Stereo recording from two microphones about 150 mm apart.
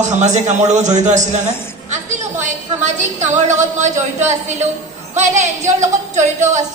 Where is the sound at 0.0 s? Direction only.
50° right (ahead or behind).